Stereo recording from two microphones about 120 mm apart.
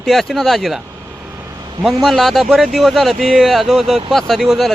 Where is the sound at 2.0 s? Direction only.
Centre (ahead or behind).